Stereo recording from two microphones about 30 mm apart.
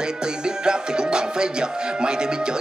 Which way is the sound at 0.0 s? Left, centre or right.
Right.